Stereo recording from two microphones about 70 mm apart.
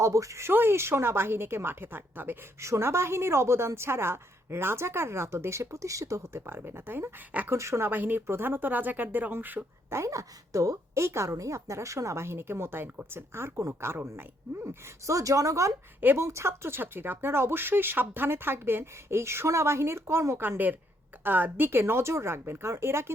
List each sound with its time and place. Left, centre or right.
0.0 s a woman's voice: right
0.5 s a woman's voice: right
2.6 s a woman's voice: right
7.5 s speech: right
9.9 s a woman's voice: right
16.0 s speech: right
16.2 s a woman's voice: right
21.2 s a woman's voice: right